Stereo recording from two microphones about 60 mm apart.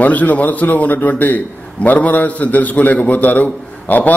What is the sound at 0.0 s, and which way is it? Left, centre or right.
A man's voice, left.